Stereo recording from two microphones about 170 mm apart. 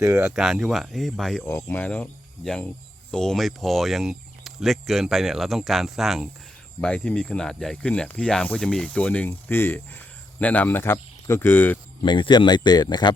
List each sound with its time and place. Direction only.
0.0 s speech: 15° right (ahead or behind)
0.3 s speech: centre (ahead or behind)
12.0 s speech: 30° left (ahead or behind)